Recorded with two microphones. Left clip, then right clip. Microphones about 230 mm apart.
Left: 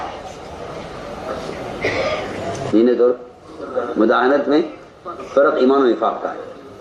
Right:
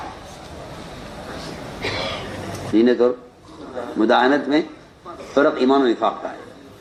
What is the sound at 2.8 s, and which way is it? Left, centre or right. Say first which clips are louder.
A man's voice: left 2 dB; right.